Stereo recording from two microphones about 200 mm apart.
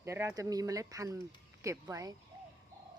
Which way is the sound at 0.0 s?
15° right (ahead or behind).